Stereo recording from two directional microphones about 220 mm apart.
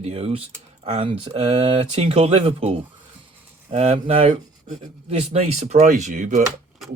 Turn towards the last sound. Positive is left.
turn(degrees=-35)  # may be behind; listen again after turning